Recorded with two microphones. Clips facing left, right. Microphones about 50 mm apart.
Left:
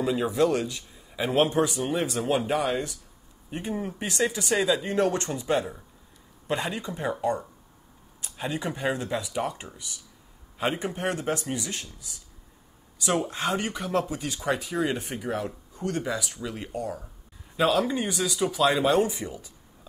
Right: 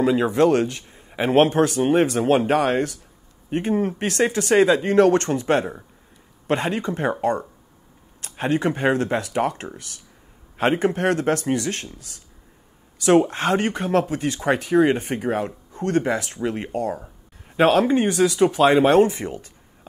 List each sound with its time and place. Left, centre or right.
0.0 s a man's voice: right
10.7 s a man's voice: right
13.3 s a man's voice: right
16.3 s a man's voice: right